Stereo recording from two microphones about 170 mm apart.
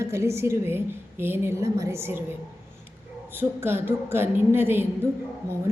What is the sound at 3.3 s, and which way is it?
A woman's voice, 15° right (ahead or behind).